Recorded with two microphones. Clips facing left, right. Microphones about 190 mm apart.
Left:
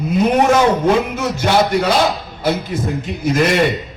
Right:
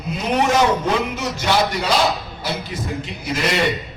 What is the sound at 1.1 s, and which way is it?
A man's voice, 50° left (ahead or behind).